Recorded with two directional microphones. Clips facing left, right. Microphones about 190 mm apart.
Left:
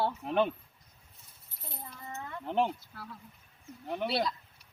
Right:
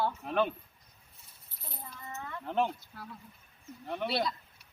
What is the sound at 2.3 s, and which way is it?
Speech, 15° left (ahead or behind).